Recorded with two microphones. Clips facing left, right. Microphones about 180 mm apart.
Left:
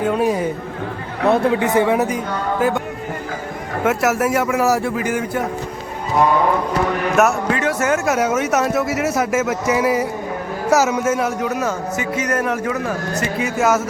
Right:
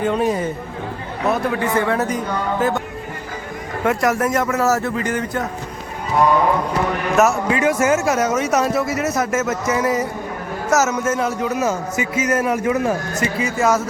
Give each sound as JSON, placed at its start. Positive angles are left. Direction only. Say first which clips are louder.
{"t": 0.0, "sound": "speech", "louder": "left 1 dB", "side_deg": 5}
{"t": 1.3, "sound": "speech", "louder": "left 4 dB", "side_deg": 20}
{"t": 3.8, "sound": "speech", "louder": "left 1 dB", "side_deg": 5}
{"t": 7.2, "sound": "speech", "louder": "right 1 dB", "side_deg": 0}
{"t": 7.6, "sound": "speech", "louder": "right 4 dB", "side_deg": -10}
{"t": 12.6, "sound": "a man's voice", "louder": "right 4 dB", "side_deg": -25}
{"t": 13.3, "sound": "speech", "louder": "left 1 dB", "side_deg": 0}